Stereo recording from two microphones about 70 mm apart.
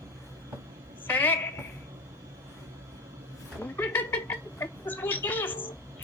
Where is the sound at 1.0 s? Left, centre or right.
Left.